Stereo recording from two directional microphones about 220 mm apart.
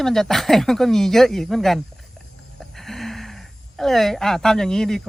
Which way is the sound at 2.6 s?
Centre (ahead or behind).